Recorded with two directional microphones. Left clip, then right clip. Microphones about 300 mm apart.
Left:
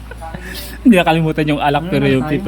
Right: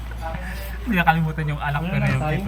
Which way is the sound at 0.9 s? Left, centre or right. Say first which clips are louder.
Left 7 dB; left.